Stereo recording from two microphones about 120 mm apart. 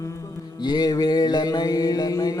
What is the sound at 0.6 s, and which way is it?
Mantra, 35° left (ahead or behind).